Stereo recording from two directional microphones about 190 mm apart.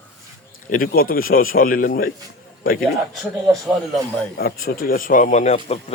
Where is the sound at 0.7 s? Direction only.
50° left (ahead or behind).